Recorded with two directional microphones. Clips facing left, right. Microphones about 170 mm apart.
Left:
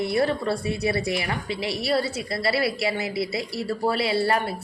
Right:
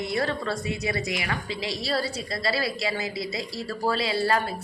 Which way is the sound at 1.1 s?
30° left (ahead or behind).